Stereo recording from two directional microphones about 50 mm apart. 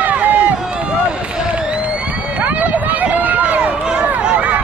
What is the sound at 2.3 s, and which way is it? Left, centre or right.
Run, right.